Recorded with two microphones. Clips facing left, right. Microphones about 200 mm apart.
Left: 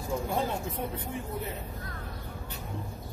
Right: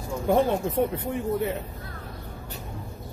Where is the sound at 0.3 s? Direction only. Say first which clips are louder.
Right 9 dB; 65° right (ahead or behind).